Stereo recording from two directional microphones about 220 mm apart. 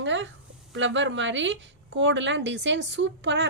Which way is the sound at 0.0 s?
55° right (ahead or behind).